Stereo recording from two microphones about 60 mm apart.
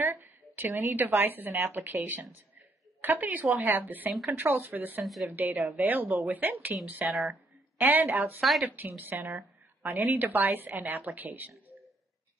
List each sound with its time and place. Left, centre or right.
0.0 s a woman's voice: right
3.0 s a woman's voice: right
5.0 s a woman's voice: centre
5.3 s a woman's voice: right
8.4 s a woman's voice: centre
8.8 s a woman's voice: right